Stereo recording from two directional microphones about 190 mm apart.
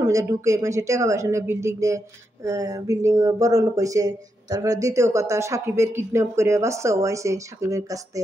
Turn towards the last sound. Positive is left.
turn(degrees=-15)  # may be behind; listen again after turning